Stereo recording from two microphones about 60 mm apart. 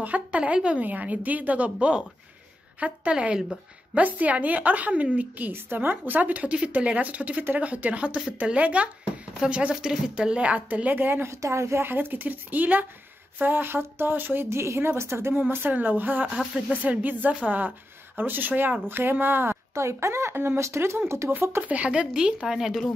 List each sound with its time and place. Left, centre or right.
0.0 s speech: right
3.9 s speech: right
5.5 s speech: right
11.4 s speech: right
21.3 s speech: right
21.6 s speech: right; by 22.8 s centre